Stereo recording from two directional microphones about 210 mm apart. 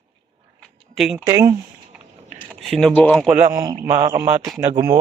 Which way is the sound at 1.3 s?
15° right (ahead or behind).